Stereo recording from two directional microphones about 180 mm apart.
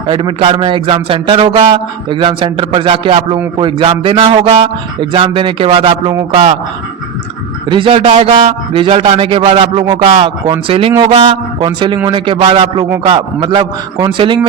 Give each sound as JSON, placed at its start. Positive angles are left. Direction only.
{"t": 0.1, "sound": "a man's voice", "side_deg": -30}
{"t": 7.7, "sound": "a man's voice", "side_deg": -30}